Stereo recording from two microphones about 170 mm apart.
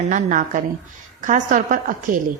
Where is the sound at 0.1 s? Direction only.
50° right (ahead or behind).